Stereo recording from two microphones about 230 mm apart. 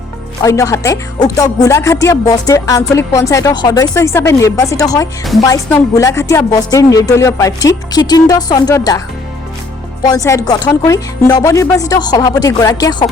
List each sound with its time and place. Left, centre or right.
0.4 s speech: centre
10.0 s speech: centre